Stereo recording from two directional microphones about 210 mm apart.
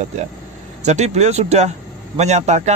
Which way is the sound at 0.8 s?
30° right (ahead or behind).